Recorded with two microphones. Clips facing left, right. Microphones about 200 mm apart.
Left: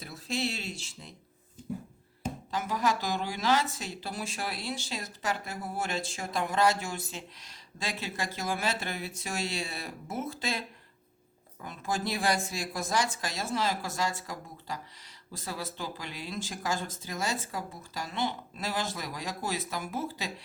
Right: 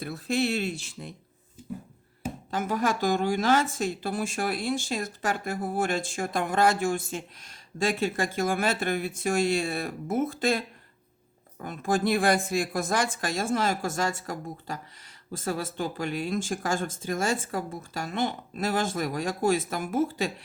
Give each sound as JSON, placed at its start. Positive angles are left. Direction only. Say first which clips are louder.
{"t": 0.0, "sound": "speech", "louder": "right 6 dB", "side_deg": -55}
{"t": 1.6, "sound": "a sound", "louder": "left 1 dB", "side_deg": -5}
{"t": 2.5, "sound": "speech", "louder": "right 3 dB", "side_deg": -50}
{"t": 11.6, "sound": "speech", "louder": "right 7 dB", "side_deg": -50}